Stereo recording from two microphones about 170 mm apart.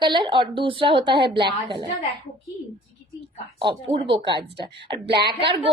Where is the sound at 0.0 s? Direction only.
30° right (ahead or behind).